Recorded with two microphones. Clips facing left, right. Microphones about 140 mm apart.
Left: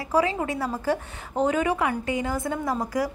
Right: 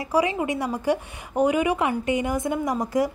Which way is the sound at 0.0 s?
15° right (ahead or behind).